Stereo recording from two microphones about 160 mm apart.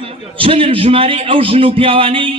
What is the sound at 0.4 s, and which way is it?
A man's voice, 35° right (ahead or behind).